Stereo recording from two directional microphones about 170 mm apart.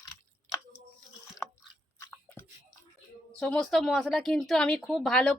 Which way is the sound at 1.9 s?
15° left (ahead or behind).